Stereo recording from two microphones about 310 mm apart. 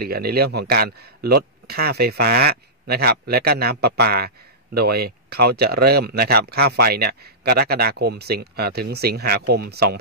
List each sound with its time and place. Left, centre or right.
0.0 s speech: right